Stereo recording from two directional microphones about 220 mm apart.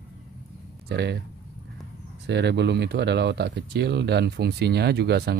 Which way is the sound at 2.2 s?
50° right (ahead or behind).